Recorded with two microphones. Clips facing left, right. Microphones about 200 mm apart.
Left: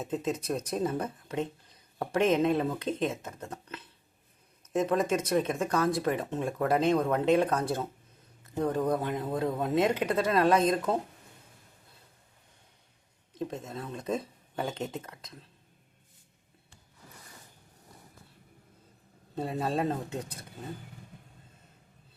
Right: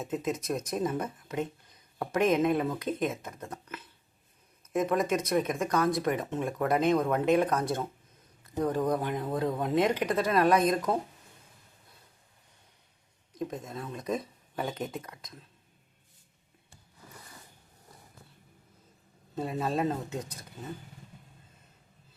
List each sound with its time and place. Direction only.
0.0 s speech: 30° left (ahead or behind)
8.9 s speech: 25° left (ahead or behind)
13.3 s speech: 30° left (ahead or behind)
19.4 s speech: 30° left (ahead or behind)